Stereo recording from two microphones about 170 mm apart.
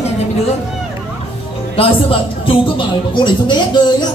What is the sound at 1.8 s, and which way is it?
Speech, 35° left (ahead or behind).